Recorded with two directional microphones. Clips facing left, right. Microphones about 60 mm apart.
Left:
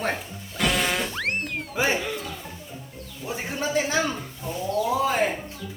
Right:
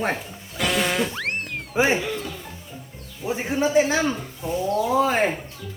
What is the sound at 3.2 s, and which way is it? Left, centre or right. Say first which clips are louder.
Speech: right 6 dB; right.